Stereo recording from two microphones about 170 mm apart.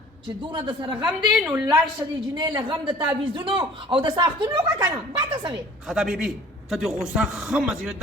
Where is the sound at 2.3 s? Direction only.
25° right (ahead or behind).